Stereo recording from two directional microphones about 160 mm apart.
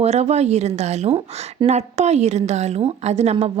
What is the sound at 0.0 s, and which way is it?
A woman's voice, 40° right (ahead or behind).